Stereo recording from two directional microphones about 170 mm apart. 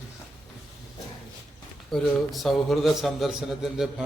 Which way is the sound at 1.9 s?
Centre (ahead or behind).